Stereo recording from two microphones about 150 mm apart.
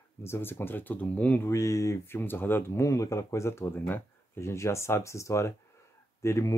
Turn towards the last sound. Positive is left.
turn(degrees=20)  # may be behind; listen again after turning